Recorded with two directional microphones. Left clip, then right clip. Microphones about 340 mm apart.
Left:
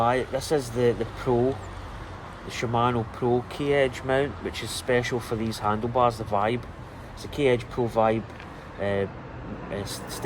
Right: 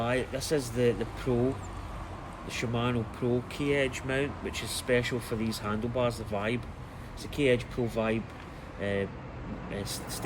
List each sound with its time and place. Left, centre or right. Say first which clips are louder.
0.0 s speech: left 7 dB; centre
2.5 s speech: left 7 dB; centre